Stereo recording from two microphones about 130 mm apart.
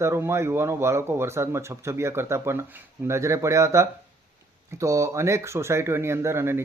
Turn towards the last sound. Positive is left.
turn(degrees=-20)  # may be behind; listen again after turning